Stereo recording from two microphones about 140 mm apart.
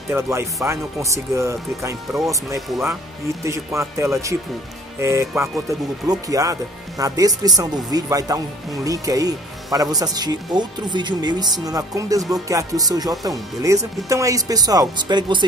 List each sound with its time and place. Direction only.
0.1 s speech: 20° right (ahead or behind)